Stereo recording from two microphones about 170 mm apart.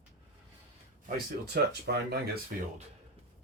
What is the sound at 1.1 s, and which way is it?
Speech, 65° right (ahead or behind).